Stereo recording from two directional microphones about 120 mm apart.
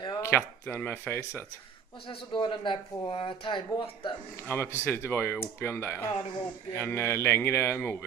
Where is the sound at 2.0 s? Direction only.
45° left (ahead or behind).